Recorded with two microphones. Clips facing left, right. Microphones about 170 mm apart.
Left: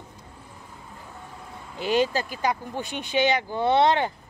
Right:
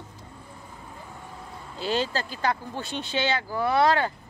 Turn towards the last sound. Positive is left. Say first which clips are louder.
# left 2 dB
turn(degrees=20)  # may be behind; listen again after turning